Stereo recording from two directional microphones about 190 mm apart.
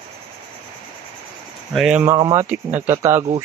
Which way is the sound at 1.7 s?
5° right (ahead or behind).